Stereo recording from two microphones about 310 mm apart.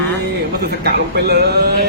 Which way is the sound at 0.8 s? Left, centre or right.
Right.